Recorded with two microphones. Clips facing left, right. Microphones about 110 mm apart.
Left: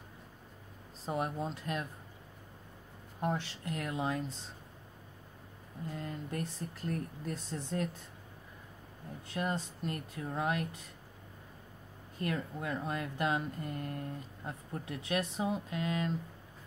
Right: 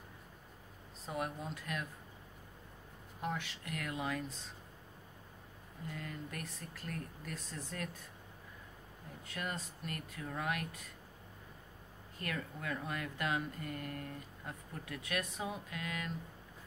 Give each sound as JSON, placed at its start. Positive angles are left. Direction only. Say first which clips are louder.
{"t": 1.0, "sound": "speech", "louder": "left 5 dB", "side_deg": 30}
{"t": 3.2, "sound": "speech", "louder": "left 5 dB", "side_deg": 35}
{"t": 5.9, "sound": "speech", "louder": "left 4 dB", "side_deg": 30}
{"t": 9.3, "sound": "speech", "louder": "left 7 dB", "side_deg": 30}
{"t": 12.2, "sound": "speech", "louder": "left 6 dB", "side_deg": 25}